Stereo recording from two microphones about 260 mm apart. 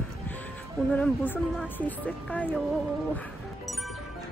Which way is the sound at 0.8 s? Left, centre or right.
Centre.